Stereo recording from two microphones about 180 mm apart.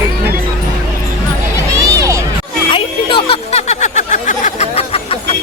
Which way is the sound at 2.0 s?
15° right (ahead or behind).